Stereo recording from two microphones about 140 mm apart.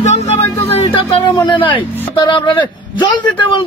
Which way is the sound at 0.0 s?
55° left (ahead or behind).